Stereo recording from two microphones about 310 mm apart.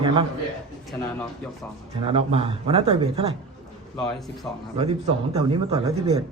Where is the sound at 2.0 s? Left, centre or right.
Centre.